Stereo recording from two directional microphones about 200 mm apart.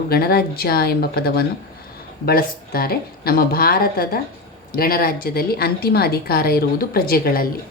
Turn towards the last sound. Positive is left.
turn(degrees=50)  # may be behind; listen again after turning